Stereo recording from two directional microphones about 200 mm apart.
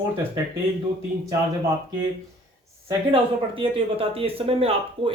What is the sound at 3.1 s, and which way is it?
Speech, 25° right (ahead or behind).